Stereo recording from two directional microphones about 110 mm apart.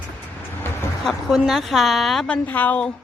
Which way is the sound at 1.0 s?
Centre (ahead or behind).